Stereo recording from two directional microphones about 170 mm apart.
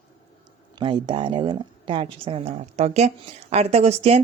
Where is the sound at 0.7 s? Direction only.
30° right (ahead or behind).